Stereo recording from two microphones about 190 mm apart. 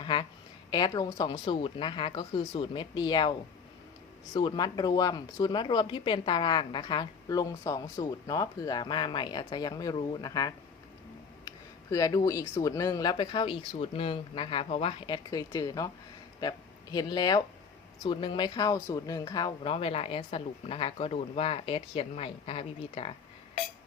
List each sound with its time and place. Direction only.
0.0 s a sound: 25° left (ahead or behind)
0.7 s speech: 20° left (ahead or behind)
4.4 s speech: 20° left (ahead or behind)